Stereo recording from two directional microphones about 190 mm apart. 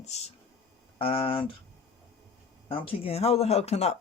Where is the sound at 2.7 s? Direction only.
30° left (ahead or behind).